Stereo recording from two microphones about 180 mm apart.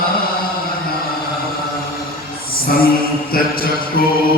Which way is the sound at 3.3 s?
55° left (ahead or behind).